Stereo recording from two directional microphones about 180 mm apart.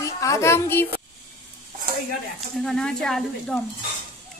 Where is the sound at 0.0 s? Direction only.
15° left (ahead or behind).